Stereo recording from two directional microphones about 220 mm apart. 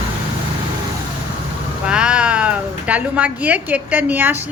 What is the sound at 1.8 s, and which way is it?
Speech, 5° right (ahead or behind).